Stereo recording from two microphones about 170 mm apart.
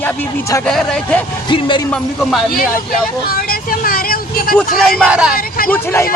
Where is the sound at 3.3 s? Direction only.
60° left (ahead or behind).